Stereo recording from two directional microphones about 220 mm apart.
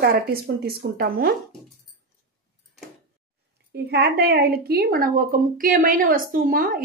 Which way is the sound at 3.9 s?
45° right (ahead or behind).